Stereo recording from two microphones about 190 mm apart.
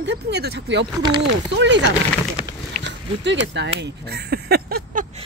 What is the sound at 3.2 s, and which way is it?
Speech, 70° right (ahead or behind).